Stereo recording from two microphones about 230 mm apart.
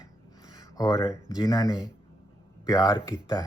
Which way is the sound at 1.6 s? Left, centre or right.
Centre.